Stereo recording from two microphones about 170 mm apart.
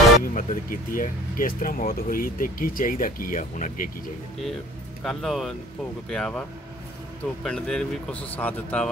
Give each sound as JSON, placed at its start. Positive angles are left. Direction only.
{"t": 0.2, "sound": "speech", "side_deg": 55}
{"t": 5.0, "sound": "speech", "side_deg": 0}
{"t": 7.4, "sound": "speech", "side_deg": 5}